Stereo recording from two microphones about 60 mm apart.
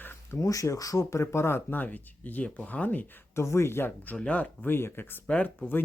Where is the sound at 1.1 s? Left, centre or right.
Left.